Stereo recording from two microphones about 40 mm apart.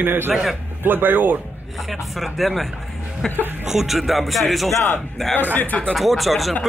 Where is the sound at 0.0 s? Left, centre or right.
Right.